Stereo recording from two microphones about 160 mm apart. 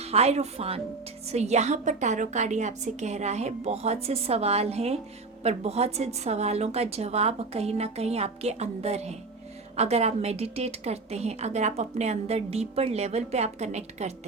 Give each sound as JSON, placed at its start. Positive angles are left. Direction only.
{"t": 0.0, "sound": "a woman's voice", "side_deg": -40}